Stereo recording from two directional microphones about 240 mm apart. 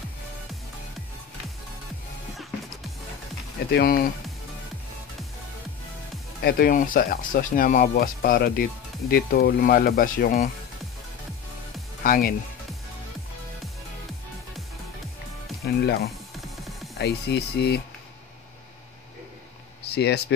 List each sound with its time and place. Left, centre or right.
3.7 s speech: left
6.4 s speech: left
12.0 s speech: left
15.6 s speech: left
19.9 s speech: left